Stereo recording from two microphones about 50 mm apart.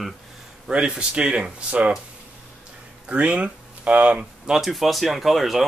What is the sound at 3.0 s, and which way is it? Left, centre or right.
Speech, right.